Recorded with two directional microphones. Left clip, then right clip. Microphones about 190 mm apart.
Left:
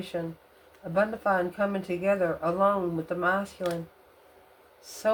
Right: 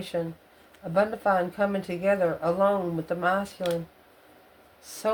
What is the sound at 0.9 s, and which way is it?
Speech, 25° right (ahead or behind).